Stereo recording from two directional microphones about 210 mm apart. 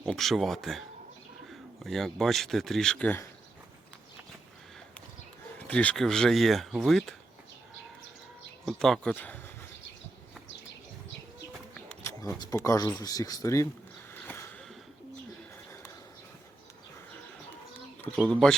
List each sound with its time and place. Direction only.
0.0 s speech: centre (ahead or behind)
5.5 s speech: 5° left (ahead or behind)
8.6 s speech: centre (ahead or behind)
11.7 s speech: 10° left (ahead or behind)
14.1 s a sound: 10° left (ahead or behind)
18.0 s speech: 5° left (ahead or behind)